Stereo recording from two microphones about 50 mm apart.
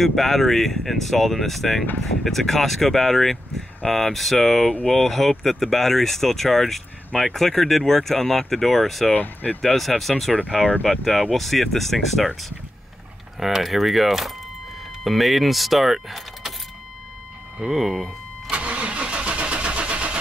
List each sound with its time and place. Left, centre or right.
0.0 s speech: centre
9.1 s speech: left
9.6 s speech: centre
13.4 s speech: centre
17.6 s speech: centre
18.5 s vehicle: right